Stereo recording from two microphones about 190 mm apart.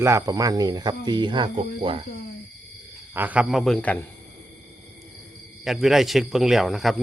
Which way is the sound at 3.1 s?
10° right (ahead or behind).